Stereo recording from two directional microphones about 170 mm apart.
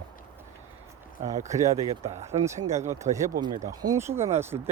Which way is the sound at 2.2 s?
15° right (ahead or behind).